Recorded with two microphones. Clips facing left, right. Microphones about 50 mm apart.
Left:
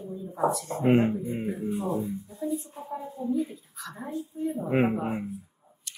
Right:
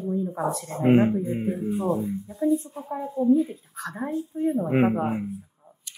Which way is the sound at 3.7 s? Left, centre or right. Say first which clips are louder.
Right 6 dB; right.